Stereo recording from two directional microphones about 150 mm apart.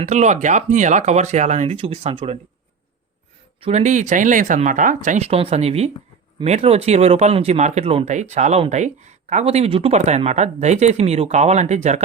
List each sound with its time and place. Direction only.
0.0 s speech: 50° right (ahead or behind)
3.6 s speech: 45° right (ahead or behind)